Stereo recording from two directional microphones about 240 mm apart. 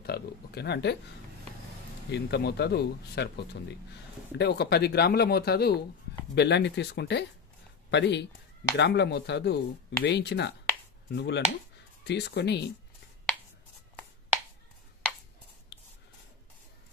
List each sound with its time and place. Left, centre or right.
0.0 s speech: left
2.0 s speech: left